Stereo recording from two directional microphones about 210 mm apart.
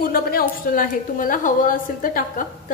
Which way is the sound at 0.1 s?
45° left (ahead or behind).